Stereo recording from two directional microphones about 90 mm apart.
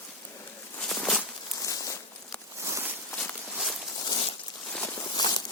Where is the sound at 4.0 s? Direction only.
55° left (ahead or behind).